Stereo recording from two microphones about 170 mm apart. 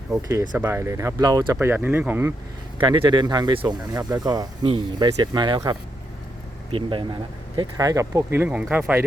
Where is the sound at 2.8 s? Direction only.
25° right (ahead or behind).